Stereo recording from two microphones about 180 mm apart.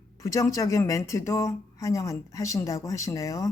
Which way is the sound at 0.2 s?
20° left (ahead or behind).